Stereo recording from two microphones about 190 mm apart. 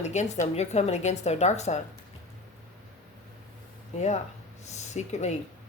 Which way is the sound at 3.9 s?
35° left (ahead or behind).